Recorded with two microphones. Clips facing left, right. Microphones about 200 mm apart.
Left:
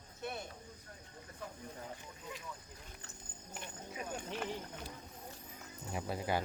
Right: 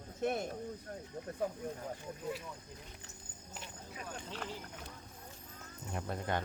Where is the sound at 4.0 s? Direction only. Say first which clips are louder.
Left 3 dB; 15° left (ahead or behind).